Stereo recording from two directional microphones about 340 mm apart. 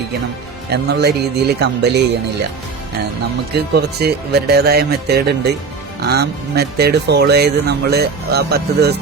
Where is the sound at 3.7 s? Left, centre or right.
Right.